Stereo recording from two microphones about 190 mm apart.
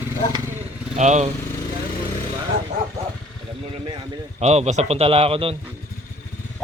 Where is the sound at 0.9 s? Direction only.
40° right (ahead or behind).